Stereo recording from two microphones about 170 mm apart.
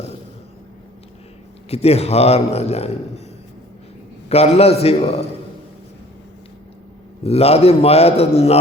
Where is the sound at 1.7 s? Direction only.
40° left (ahead or behind).